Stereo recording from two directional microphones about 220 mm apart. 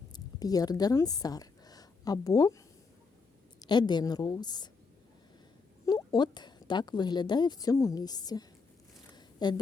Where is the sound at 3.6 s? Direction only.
20° left (ahead or behind).